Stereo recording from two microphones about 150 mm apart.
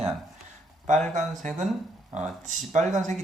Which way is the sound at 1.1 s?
55° right (ahead or behind).